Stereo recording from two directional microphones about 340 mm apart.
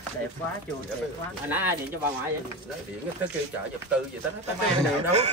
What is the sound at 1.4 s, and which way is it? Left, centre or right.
Speech, centre.